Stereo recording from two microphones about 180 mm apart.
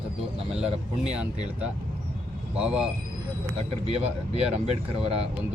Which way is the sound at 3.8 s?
35° right (ahead or behind).